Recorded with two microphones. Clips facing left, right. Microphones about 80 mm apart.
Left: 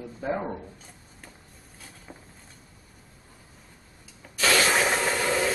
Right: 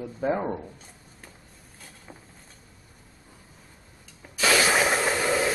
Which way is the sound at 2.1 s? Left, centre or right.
Centre.